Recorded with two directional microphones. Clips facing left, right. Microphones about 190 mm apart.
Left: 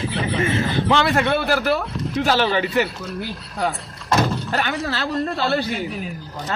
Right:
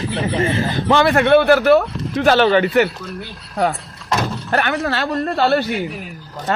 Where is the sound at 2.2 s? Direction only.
60° right (ahead or behind).